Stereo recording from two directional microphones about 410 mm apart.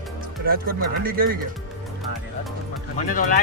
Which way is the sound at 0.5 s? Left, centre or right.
Right.